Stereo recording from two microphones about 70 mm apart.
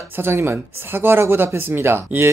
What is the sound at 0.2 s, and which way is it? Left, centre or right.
Speech, right.